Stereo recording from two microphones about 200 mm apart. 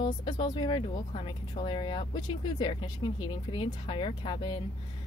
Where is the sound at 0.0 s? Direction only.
25° left (ahead or behind).